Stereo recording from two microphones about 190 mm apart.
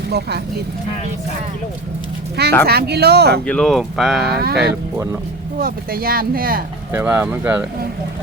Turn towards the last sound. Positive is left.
turn(degrees=-10)  # may be behind; listen again after turning